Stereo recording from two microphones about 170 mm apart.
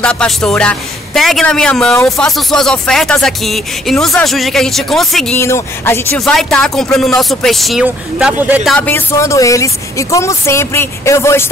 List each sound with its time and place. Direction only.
0.0 s speech: 5° left (ahead or behind)
5.4 s speech: 15° left (ahead or behind)
6.1 s speech: 5° left (ahead or behind)
8.7 s speech: 10° left (ahead or behind)